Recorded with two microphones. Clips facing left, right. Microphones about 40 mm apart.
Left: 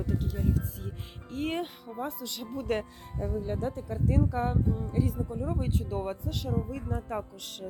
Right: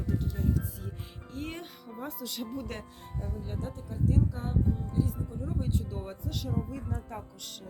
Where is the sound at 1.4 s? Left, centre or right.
Left.